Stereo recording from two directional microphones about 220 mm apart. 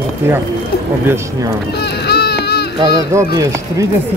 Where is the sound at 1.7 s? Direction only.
45° left (ahead or behind).